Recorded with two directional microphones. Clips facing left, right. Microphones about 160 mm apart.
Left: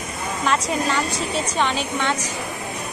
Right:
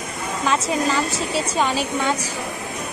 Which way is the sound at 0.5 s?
Centre (ahead or behind).